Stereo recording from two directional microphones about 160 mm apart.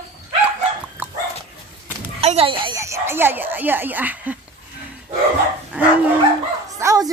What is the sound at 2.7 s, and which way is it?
Speech, 20° right (ahead or behind).